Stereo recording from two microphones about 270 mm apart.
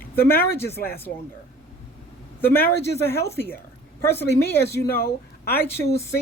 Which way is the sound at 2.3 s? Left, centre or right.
Centre.